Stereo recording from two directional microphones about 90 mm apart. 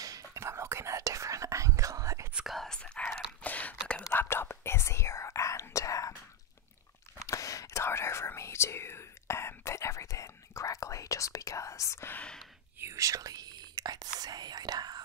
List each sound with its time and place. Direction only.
0.0 s whispering: 40° right (ahead or behind)
2.3 s whispering: centre (ahead or behind)
3.4 s a sound: 15° left (ahead or behind)
4.1 s whispering: 25° left (ahead or behind)
7.2 s whispering: 40° left (ahead or behind)
12.1 s whispering: 15° left (ahead or behind)
12.7 s whispering: 30° right (ahead or behind); by 15.0 s 50° right (ahead or behind)